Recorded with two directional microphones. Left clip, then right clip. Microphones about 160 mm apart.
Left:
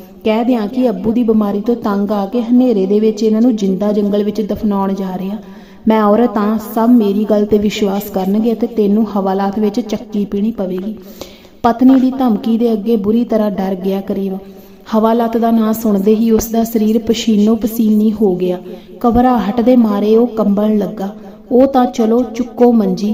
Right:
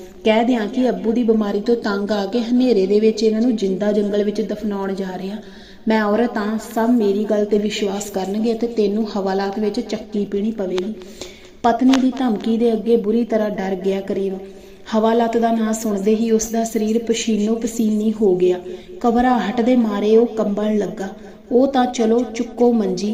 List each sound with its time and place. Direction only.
0.3 s a woman's voice: 40° left (ahead or behind)